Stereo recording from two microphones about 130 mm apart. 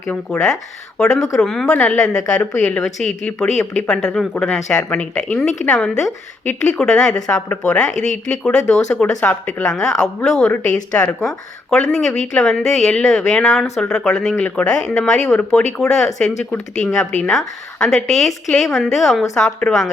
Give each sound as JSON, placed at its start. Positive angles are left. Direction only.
{"t": 0.1, "sound": "a woman's voice", "side_deg": 5}
{"t": 7.9, "sound": "speech", "side_deg": 65}
{"t": 8.3, "sound": "a woman's voice", "side_deg": 5}